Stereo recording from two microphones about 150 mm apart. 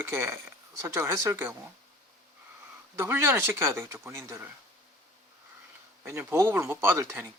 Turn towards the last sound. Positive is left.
turn(degrees=-15)  # may be behind; listen again after turning